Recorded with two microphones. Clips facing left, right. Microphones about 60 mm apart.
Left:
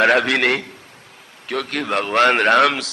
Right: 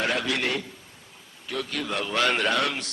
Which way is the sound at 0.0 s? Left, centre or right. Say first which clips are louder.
Left 11 dB; left.